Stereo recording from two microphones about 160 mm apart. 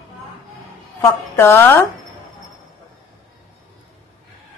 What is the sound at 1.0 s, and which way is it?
Speech, 15° left (ahead or behind).